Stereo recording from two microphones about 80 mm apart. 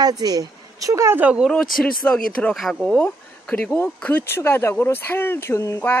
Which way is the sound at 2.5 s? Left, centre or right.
Centre.